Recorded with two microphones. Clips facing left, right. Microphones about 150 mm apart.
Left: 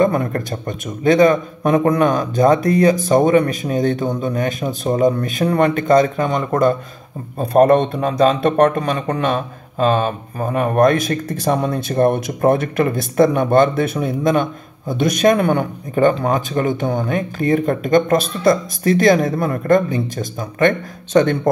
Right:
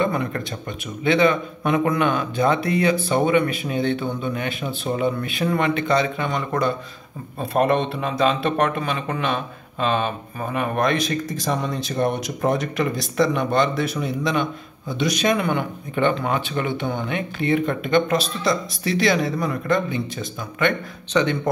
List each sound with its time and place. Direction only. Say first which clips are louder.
0.0 s a man's voice: left 6 dB; 45° left (ahead or behind)